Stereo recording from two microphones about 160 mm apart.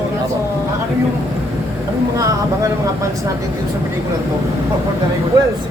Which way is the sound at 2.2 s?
20° right (ahead or behind).